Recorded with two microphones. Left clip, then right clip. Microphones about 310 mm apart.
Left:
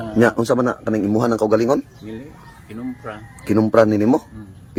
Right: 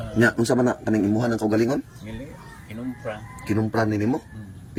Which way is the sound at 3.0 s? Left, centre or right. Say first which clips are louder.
Left 4 dB; centre.